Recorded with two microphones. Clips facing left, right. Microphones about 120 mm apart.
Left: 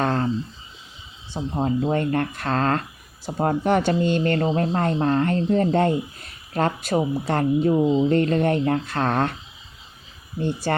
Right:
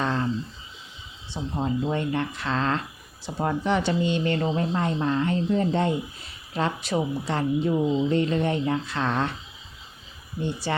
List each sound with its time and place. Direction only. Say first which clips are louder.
0.0 s a sound: left 4 dB; 50° left (ahead or behind)
1.6 s speech: left 4 dB; 50° left (ahead or behind)
7.7 s speech: left 5 dB; 30° left (ahead or behind)
8.1 s speech: left 4 dB; 50° left (ahead or behind)
10.4 s speech: left 4 dB; 45° left (ahead or behind)